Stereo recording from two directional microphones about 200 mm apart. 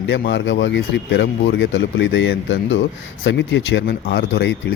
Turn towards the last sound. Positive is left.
turn(degrees=60)  # may be behind; listen again after turning